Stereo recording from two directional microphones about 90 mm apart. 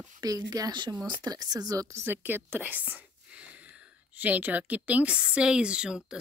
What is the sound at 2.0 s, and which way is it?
Speech, 25° right (ahead or behind).